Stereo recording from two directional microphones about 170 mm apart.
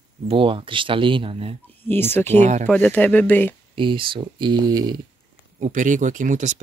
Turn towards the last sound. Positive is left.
turn(degrees=-45)  # may be behind; listen again after turning